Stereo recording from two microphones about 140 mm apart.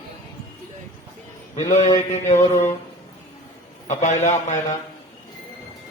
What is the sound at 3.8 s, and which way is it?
Speech, 55° left (ahead or behind).